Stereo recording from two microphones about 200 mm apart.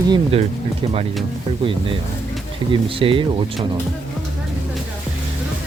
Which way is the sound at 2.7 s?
25° right (ahead or behind).